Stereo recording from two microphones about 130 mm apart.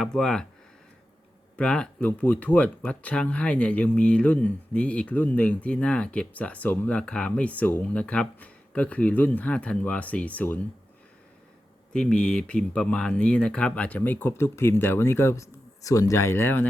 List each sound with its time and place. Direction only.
0.0 s speech: 5° left (ahead or behind)
1.5 s speech: 5° left (ahead or behind)
11.9 s speech: 5° left (ahead or behind)